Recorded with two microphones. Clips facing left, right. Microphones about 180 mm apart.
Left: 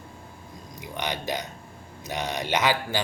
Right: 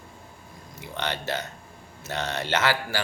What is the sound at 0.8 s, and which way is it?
Speech, 15° left (ahead or behind).